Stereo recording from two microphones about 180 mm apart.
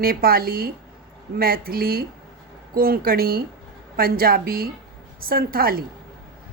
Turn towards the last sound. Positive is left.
turn(degrees=-55)  # may be behind; listen again after turning